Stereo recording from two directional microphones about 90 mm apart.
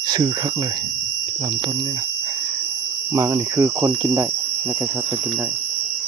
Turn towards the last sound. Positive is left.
turn(degrees=-40)  # may be behind; listen again after turning